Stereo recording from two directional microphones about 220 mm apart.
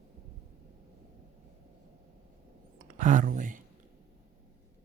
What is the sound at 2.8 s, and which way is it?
Speech, 35° right (ahead or behind).